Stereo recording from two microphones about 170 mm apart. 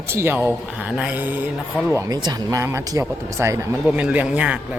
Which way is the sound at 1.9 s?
25° right (ahead or behind).